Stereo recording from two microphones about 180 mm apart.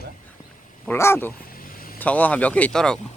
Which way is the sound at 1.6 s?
55° left (ahead or behind).